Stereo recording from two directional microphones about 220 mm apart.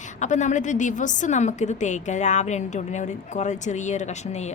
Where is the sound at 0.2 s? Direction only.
35° left (ahead or behind).